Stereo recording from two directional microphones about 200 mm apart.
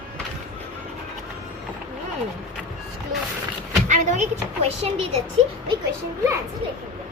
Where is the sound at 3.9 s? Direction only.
35° right (ahead or behind).